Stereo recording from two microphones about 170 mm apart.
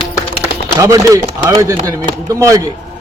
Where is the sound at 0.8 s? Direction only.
20° right (ahead or behind).